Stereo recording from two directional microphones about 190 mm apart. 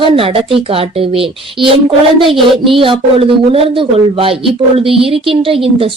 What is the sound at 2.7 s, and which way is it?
A woman's voice, 30° right (ahead or behind).